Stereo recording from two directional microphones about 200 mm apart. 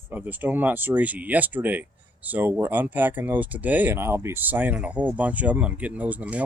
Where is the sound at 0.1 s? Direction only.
10° right (ahead or behind).